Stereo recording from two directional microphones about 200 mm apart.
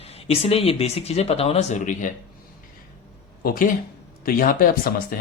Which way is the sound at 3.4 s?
40° left (ahead or behind).